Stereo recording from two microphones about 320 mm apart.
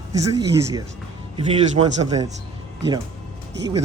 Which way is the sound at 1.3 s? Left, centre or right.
Centre.